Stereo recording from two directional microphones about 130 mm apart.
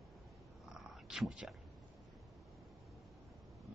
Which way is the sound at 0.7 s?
Centre (ahead or behind).